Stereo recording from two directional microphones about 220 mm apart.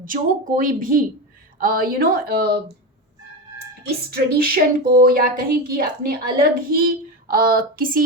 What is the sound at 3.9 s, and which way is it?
Speech, 45° right (ahead or behind).